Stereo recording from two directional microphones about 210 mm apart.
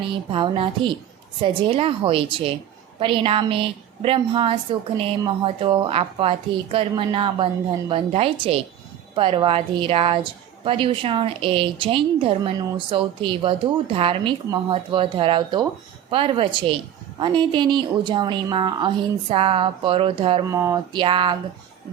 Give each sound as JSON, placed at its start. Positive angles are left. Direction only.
{"t": 0.3, "sound": "a woman's voice", "side_deg": -25}